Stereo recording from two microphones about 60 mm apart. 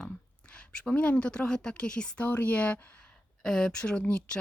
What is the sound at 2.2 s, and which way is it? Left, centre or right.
Speech, left.